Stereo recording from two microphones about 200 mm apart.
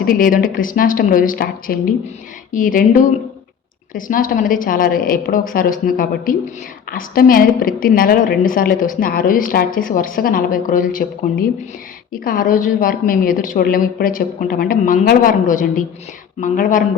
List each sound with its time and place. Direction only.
0.0 s a woman's voice: 45° left (ahead or behind)